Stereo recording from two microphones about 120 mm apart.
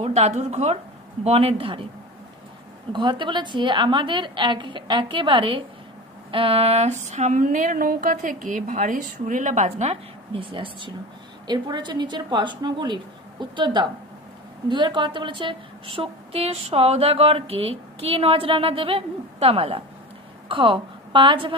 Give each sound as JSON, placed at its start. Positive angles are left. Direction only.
{"t": 0.0, "sound": "a woman's voice", "side_deg": -65}
{"t": 2.9, "sound": "a woman's voice", "side_deg": -40}
{"t": 6.3, "sound": "a sound", "side_deg": -50}
{"t": 10.3, "sound": "a woman's voice", "side_deg": -45}